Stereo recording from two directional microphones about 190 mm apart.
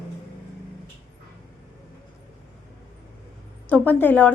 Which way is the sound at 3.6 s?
10° left (ahead or behind).